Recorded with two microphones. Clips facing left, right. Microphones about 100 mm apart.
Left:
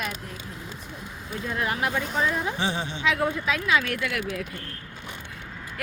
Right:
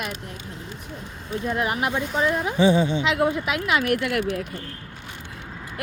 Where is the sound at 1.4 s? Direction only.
20° right (ahead or behind).